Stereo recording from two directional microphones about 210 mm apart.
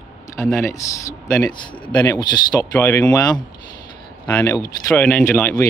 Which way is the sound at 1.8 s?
5° left (ahead or behind).